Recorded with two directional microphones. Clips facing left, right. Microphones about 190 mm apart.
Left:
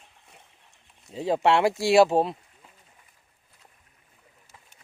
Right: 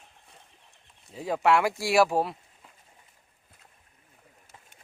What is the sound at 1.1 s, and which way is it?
Speech, 25° left (ahead or behind).